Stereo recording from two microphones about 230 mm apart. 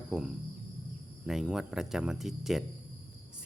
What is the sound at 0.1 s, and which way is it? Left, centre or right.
Speech, centre.